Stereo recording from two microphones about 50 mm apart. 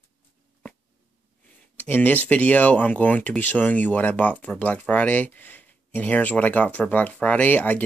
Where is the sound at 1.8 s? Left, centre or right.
Left.